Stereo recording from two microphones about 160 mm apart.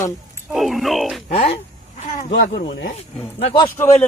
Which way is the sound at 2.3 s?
90° left.